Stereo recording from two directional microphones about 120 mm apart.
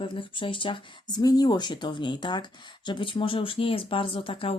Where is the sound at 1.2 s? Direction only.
35° left (ahead or behind); by 4.5 s 50° left (ahead or behind).